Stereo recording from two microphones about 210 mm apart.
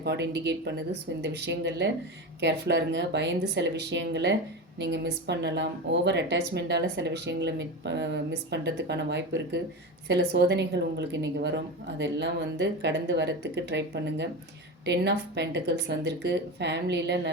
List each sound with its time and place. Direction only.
0.0 s speech: 55° right (ahead or behind)